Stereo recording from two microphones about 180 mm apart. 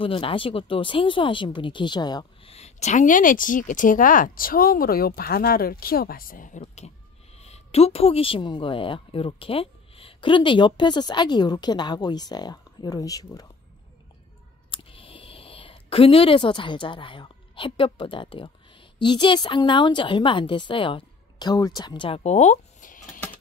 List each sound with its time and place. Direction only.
0.0 s a woman's voice: 30° left (ahead or behind)
2.5 s speech: 40° left (ahead or behind)
6.6 s a woman's voice: 35° left (ahead or behind); by 13.5 s 20° left (ahead or behind)
14.7 s speech: 30° left (ahead or behind); by 23.2 s 45° left (ahead or behind)